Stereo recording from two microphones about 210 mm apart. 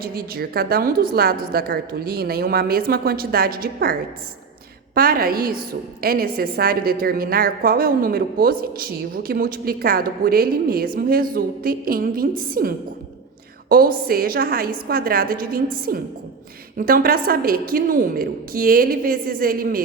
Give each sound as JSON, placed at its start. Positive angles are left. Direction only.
{"t": 0.0, "sound": "a woman's voice", "side_deg": -45}
{"t": 4.9, "sound": "a woman's voice", "side_deg": -45}